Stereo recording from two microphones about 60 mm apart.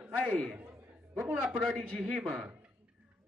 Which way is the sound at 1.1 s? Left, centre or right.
Centre.